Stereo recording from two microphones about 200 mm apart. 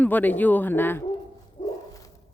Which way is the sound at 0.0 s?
10° left (ahead or behind).